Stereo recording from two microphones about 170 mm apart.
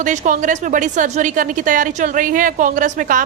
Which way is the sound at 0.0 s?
45° right (ahead or behind).